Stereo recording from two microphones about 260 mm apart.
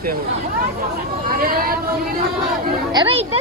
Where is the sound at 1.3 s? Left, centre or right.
Right.